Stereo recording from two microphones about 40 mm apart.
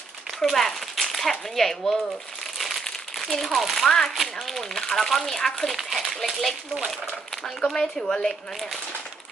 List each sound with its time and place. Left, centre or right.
0.3 s speech: centre
2.6 s crumpling: centre
3.2 s speech: centre
4.1 s speech: centre
5.7 s a sound: centre
6.1 s speech: centre
7.6 s speech: centre